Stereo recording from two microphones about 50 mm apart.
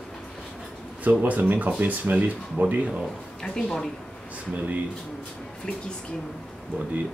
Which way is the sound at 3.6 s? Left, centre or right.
Centre.